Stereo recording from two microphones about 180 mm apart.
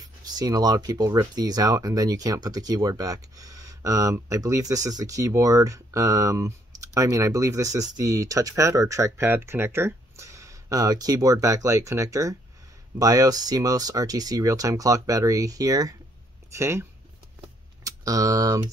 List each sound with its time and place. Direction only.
0.0 s speech: 20° right (ahead or behind)
17.8 s speech: 20° right (ahead or behind)